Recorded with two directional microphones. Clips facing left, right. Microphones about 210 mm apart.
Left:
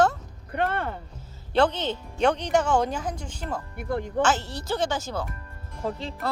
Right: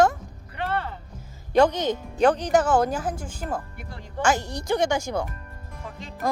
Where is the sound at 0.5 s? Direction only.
50° left (ahead or behind).